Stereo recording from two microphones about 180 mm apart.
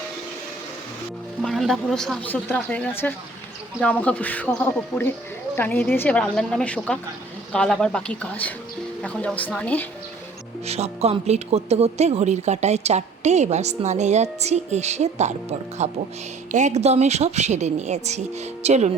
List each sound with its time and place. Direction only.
1.4 s speech: centre (ahead or behind)
10.7 s a woman's voice: 35° right (ahead or behind)